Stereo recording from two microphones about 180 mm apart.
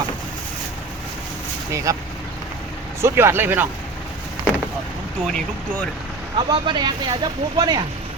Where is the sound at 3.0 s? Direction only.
15° right (ahead or behind).